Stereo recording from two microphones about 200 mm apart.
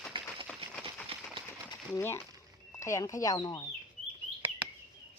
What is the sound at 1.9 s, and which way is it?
Speech, 15° left (ahead or behind).